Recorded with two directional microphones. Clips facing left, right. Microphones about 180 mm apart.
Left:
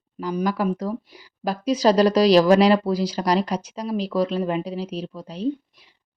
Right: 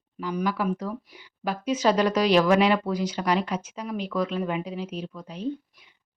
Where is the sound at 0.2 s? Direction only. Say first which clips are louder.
Left 4 dB; 40° left (ahead or behind).